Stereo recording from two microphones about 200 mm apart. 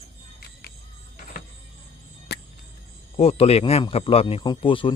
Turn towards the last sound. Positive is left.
turn(degrees=25)  # may be behind; listen again after turning